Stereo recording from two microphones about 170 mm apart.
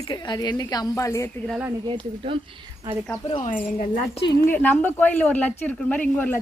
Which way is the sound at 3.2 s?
45° left (ahead or behind).